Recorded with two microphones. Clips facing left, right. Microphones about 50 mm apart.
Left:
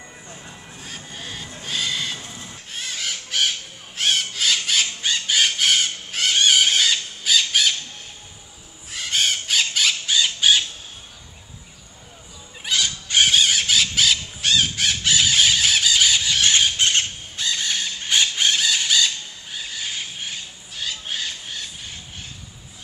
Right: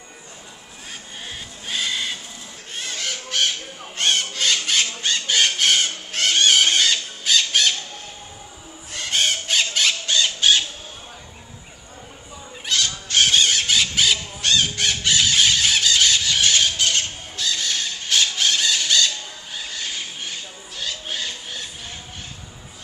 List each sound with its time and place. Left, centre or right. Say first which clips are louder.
0.8 s crow: even; centre
8.9 s a sound: even; centre
12.6 s squawk: even; centre
16.4 s squeal: left 1 dB; left
16.7 s squawk: left 1 dB; left
17.5 s a sound: even; centre
18.9 s squawk: even; centre